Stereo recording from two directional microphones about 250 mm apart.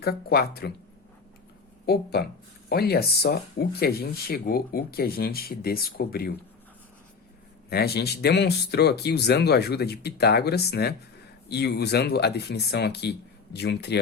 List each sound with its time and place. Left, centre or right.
0.0 s speech: left
2.6 s speech: left
7.7 s speech: left